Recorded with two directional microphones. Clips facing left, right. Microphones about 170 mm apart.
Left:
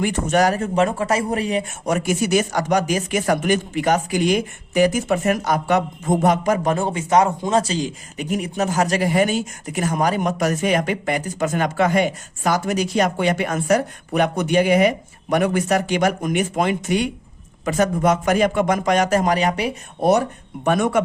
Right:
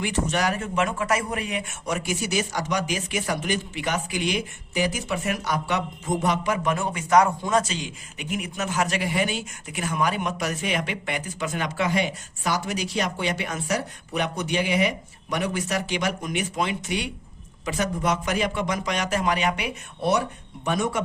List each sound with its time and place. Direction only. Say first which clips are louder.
0.0 s speech: left 7 dB; 50° left (ahead or behind); by 1.9 s 30° left (ahead or behind)
1.9 s speech: left 8 dB; 50° left (ahead or behind)
20.7 s speech: left 7 dB; 55° left (ahead or behind)